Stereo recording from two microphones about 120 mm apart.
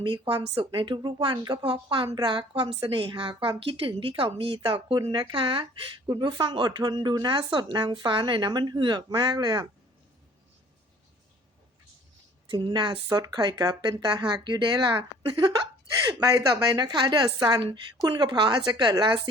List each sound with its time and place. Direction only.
0.0 s a woman's voice: 40° right (ahead or behind)
6.1 s speech: 35° right (ahead or behind)
12.5 s speech: 40° right (ahead or behind)